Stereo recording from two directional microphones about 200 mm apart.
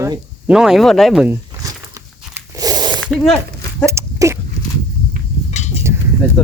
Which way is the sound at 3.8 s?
15° right (ahead or behind).